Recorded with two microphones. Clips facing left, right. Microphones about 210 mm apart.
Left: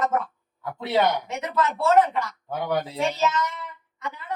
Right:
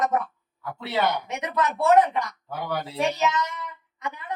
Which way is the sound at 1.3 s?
15° right (ahead or behind).